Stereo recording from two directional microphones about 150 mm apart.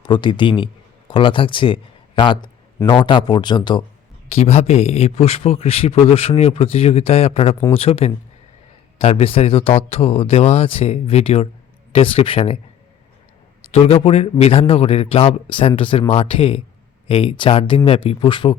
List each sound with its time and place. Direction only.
0.0 s speech: 30° left (ahead or behind)
4.3 s speech: 45° left (ahead or behind)
13.7 s speech: 40° left (ahead or behind)